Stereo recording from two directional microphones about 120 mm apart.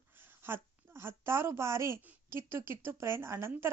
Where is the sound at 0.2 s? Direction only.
20° right (ahead or behind).